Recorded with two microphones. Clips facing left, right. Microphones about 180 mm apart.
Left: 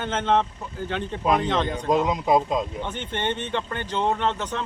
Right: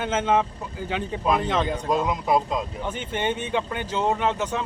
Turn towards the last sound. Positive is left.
turn(degrees=-10)  # may be behind; listen again after turning